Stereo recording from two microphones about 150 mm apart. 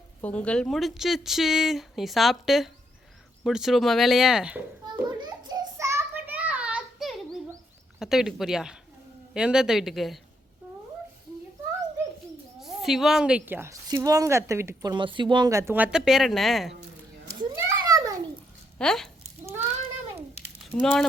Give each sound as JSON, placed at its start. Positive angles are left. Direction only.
{"t": 0.2, "sound": "speech", "side_deg": 10}
{"t": 5.0, "sound": "a sound", "side_deg": -30}
{"t": 7.9, "sound": "speech", "side_deg": -5}
{"t": 12.5, "sound": "a woman's voice", "side_deg": 0}
{"t": 17.2, "sound": "a sound", "side_deg": -20}
{"t": 18.8, "sound": "speech", "side_deg": 5}
{"t": 20.7, "sound": "speech", "side_deg": 15}